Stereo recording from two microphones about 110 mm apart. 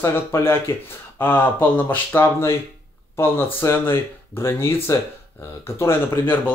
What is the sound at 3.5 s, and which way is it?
A man's voice, 20° left (ahead or behind).